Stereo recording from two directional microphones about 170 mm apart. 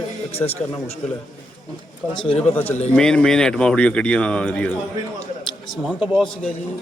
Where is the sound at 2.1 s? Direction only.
30° left (ahead or behind).